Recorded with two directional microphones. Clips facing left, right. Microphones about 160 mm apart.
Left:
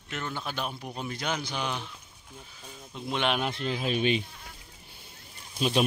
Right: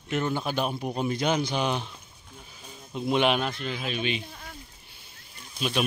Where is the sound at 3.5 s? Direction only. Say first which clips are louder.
Left 3 dB; 30° left (ahead or behind).